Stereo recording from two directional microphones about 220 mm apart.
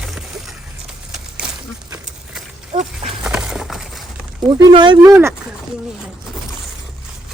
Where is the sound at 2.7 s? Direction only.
30° right (ahead or behind).